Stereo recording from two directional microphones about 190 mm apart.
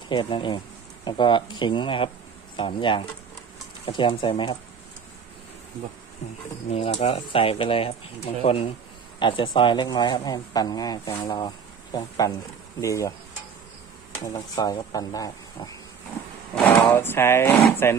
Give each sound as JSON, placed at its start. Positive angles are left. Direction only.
{"t": 0.1, "sound": "speech", "side_deg": 25}
{"t": 6.7, "sound": "speech", "side_deg": 35}
{"t": 14.2, "sound": "speech", "side_deg": 20}